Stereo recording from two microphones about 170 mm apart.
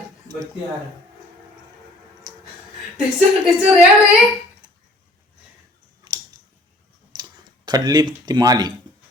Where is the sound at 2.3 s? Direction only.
25° right (ahead or behind).